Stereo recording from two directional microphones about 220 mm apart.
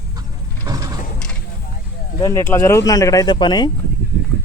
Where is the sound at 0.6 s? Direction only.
15° right (ahead or behind).